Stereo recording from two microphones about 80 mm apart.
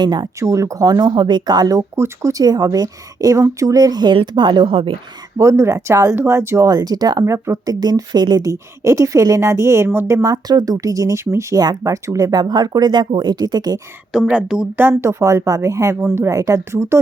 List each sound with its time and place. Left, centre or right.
0.0 s speech: right
0.3 s a woman's voice: right
0.9 s a woman's voice: right
5.4 s a woman's voice: right
6.6 s a woman's voice: right
7.3 s speech: right
8.4 s a woman's voice: right
10.3 s a woman's voice: right
14.1 s a woman's voice: centre
14.8 s a woman's voice: right